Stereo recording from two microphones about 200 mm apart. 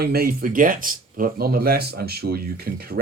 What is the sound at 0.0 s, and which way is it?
Speech, 50° right (ahead or behind).